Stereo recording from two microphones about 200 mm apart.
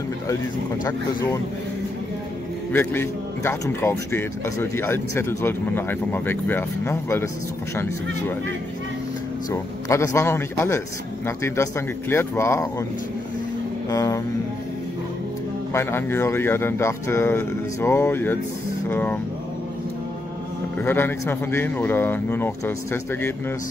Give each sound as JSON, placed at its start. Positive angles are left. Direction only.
{"t": 0.8, "sound": "a man's voice", "side_deg": 15}
{"t": 2.7, "sound": "a man's voice", "side_deg": 10}
{"t": 9.5, "sound": "a man's voice", "side_deg": 15}
{"t": 13.8, "sound": "a man's voice", "side_deg": 15}
{"t": 15.7, "sound": "a man's voice", "side_deg": 10}
{"t": 20.8, "sound": "a man's voice", "side_deg": 10}